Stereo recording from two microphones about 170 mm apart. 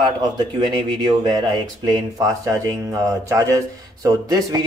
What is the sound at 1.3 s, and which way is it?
Speech, 25° right (ahead or behind).